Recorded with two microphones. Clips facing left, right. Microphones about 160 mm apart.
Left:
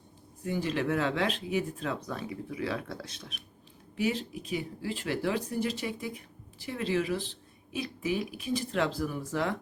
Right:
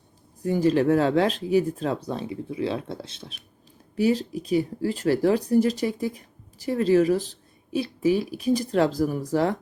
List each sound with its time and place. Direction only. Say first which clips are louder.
0.4 s speech: right 10 dB; 40° right (ahead or behind)
3.9 s speech: right 8 dB; 40° right (ahead or behind)